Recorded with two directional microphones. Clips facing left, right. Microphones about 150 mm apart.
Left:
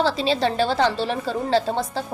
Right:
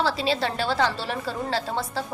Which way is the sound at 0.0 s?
20° left (ahead or behind).